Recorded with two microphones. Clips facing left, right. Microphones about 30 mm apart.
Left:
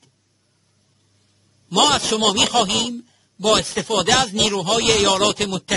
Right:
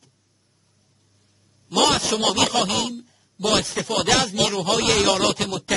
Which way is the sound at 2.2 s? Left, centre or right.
Centre.